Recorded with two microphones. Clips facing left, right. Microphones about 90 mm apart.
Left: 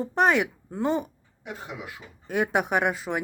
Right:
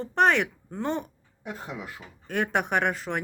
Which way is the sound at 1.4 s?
40° right (ahead or behind).